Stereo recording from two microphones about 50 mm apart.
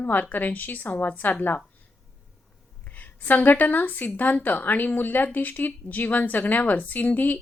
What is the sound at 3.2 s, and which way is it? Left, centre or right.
Speech, left.